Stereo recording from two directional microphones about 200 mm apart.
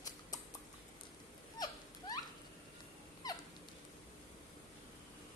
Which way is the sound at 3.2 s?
20° left (ahead or behind).